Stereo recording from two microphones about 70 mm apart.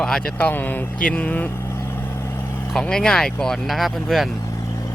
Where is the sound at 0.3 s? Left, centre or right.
Left.